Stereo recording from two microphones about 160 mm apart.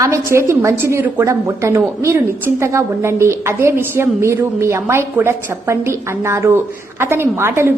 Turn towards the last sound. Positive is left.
turn(degrees=-15)  # may be behind; listen again after turning